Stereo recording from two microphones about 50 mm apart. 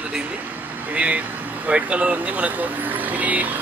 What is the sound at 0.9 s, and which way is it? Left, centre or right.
Speech, right.